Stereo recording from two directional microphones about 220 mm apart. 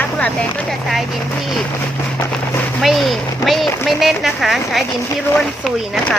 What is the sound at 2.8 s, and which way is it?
Speech, centre (ahead or behind).